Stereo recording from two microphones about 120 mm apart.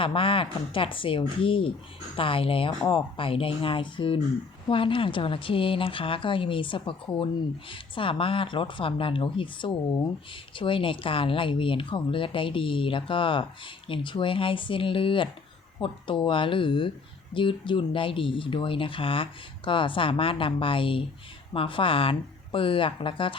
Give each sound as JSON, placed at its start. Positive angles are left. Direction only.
{"t": 0.0, "sound": "speech", "side_deg": 50}